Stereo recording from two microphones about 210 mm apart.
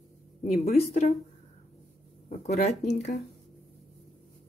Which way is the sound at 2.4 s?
35° left (ahead or behind).